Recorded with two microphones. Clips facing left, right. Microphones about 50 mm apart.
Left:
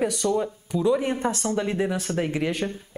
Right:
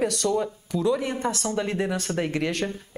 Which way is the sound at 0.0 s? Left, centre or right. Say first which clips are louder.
Even; centre.